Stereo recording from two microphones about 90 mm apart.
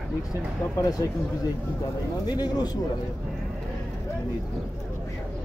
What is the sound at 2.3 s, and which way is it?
Speech, 50° left (ahead or behind).